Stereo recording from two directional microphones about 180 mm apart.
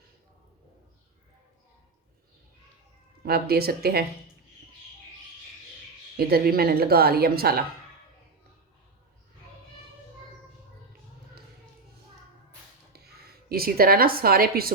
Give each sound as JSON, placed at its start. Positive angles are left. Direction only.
{"t": 3.2, "sound": "a woman's voice", "side_deg": -60}
{"t": 6.1, "sound": "a woman's voice", "side_deg": -60}
{"t": 12.9, "sound": "a woman's voice", "side_deg": -60}